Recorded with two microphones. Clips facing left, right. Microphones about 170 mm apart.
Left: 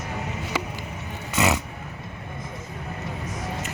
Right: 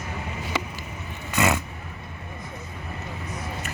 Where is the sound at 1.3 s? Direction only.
20° left (ahead or behind).